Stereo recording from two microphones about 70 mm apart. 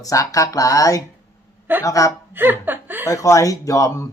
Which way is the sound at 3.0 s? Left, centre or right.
Left.